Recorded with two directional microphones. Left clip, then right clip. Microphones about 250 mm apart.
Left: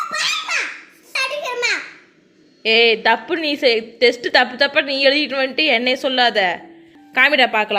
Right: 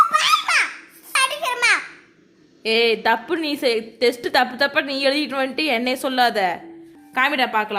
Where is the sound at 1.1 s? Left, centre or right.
Centre.